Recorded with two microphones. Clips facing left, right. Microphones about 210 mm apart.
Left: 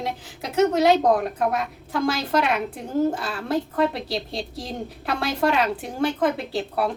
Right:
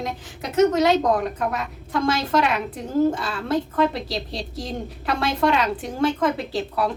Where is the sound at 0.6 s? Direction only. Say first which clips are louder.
Right 1 dB; centre (ahead or behind).